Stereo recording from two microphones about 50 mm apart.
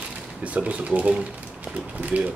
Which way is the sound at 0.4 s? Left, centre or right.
Right.